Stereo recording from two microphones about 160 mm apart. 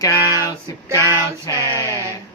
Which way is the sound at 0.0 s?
20° left (ahead or behind).